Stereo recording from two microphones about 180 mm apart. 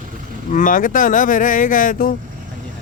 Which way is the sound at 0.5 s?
50° left (ahead or behind).